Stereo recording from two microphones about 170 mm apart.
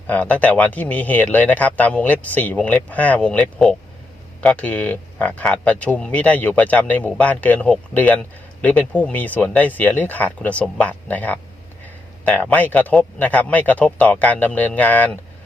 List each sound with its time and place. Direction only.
0.1 s speech: 10° left (ahead or behind)